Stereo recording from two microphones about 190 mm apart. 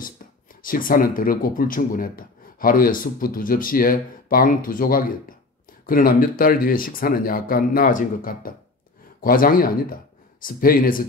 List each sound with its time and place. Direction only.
0.6 s speech: 45° left (ahead or behind)